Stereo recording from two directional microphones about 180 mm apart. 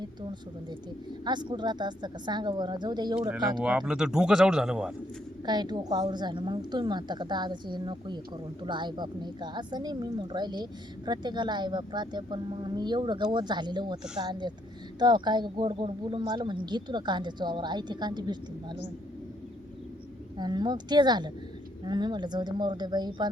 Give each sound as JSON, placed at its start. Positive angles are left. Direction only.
{"t": 0.0, "sound": "a sound", "side_deg": -25}
{"t": 1.2, "sound": "a woman's voice", "side_deg": -25}
{"t": 3.2, "sound": "speech", "side_deg": -5}
{"t": 5.5, "sound": "a woman's voice", "side_deg": -25}
{"t": 20.4, "sound": "a woman's voice", "side_deg": -25}